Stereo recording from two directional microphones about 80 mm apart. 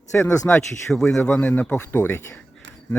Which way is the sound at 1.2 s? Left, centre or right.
Centre.